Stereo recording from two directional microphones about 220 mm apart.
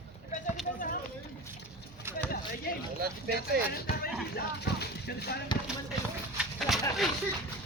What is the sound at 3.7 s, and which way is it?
Speech, 45° left (ahead or behind).